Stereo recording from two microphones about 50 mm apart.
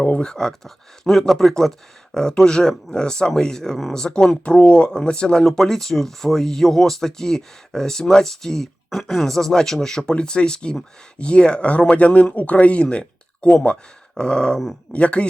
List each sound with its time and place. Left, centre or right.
0.0 s speech: left
0.3 s speech: centre